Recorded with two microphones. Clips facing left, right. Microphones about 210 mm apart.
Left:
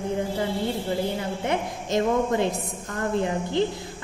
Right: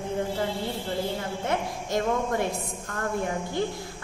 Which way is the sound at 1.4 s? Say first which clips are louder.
Left 2 dB; 20° left (ahead or behind).